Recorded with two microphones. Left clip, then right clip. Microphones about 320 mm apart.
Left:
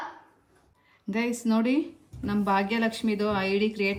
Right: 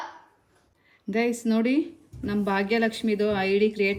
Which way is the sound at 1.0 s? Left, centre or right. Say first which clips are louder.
Right 4 dB; centre.